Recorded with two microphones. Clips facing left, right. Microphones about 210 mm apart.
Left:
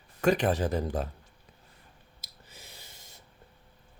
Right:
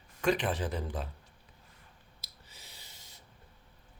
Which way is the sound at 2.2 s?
50° left (ahead or behind).